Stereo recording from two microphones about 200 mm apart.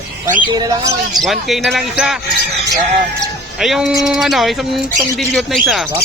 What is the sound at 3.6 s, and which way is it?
Speech, centre (ahead or behind).